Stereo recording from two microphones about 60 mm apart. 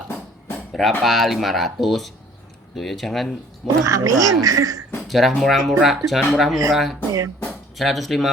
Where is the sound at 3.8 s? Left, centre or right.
Right.